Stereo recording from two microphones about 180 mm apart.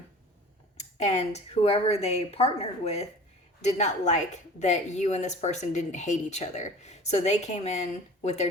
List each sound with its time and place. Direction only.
0.8 s a woman's voice: 40° left (ahead or behind)